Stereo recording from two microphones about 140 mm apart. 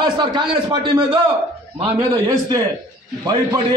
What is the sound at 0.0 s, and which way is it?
A man's voice, 35° right (ahead or behind).